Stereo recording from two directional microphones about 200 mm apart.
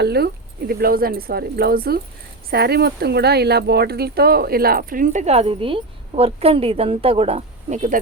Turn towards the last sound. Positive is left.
turn(degrees=-35)  # may be behind; listen again after turning